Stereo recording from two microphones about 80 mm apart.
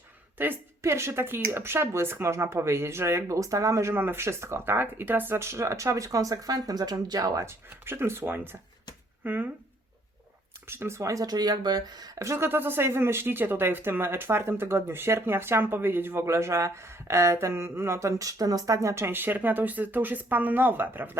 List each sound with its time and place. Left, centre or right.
0.3 s speech: right
7.4 s speech: right
10.7 s speech: right
12.2 s speech: right